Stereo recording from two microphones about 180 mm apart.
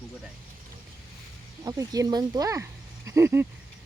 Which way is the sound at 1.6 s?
20° right (ahead or behind).